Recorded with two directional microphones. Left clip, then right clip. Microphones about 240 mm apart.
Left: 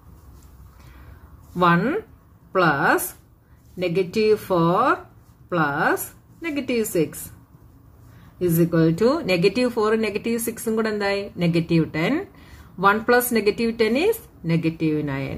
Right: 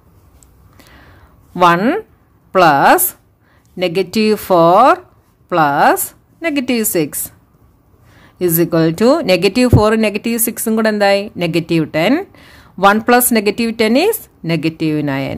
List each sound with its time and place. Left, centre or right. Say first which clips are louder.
1.5 s speech: right 8 dB; right
8.4 s speech: right 6 dB; right